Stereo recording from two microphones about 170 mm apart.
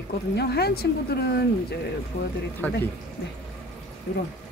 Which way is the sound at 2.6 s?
10° left (ahead or behind).